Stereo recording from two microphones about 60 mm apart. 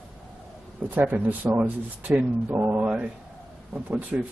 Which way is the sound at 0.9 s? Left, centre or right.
Right.